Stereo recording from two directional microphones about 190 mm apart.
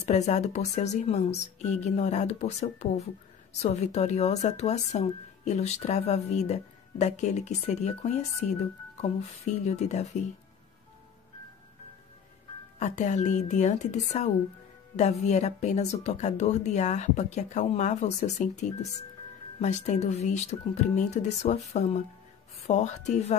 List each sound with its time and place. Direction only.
0.0 s speech: 35° left (ahead or behind)
12.7 s speech: 40° left (ahead or behind)